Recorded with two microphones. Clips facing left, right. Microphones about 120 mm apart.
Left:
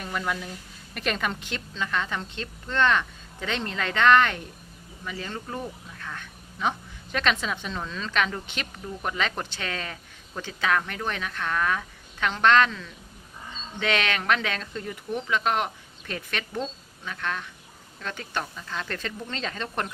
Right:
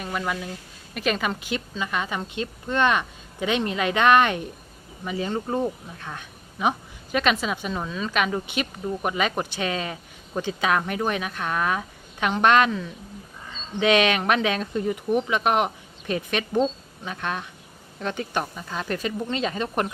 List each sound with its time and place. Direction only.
0.0 s a woman's voice: 5° right (ahead or behind)